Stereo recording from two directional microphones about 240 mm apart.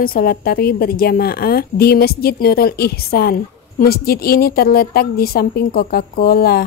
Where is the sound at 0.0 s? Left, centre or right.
Left.